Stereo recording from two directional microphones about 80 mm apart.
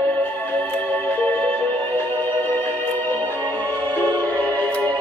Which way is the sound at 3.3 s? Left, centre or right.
Left.